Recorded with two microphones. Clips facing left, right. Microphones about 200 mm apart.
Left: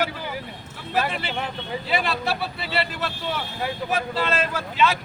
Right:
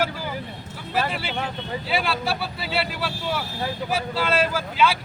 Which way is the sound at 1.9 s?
5° right (ahead or behind).